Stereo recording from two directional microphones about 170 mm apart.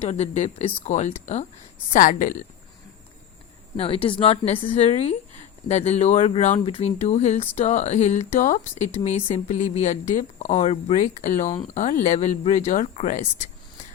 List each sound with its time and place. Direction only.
0.0 s speech: 40° left (ahead or behind)
3.8 s speech: 35° left (ahead or behind)